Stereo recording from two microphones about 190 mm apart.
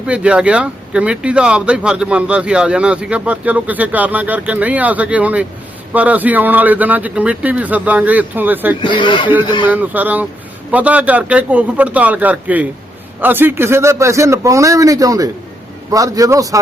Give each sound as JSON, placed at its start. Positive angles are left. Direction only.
{"t": 0.0, "sound": "speech", "side_deg": -5}
{"t": 8.8, "sound": "speech", "side_deg": 25}
{"t": 9.6, "sound": "speech", "side_deg": -10}